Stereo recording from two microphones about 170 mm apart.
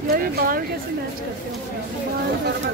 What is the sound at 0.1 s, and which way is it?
Speech, 60° right (ahead or behind).